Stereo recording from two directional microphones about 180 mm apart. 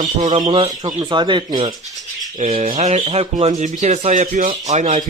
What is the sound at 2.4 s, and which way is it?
Speech, 40° right (ahead or behind).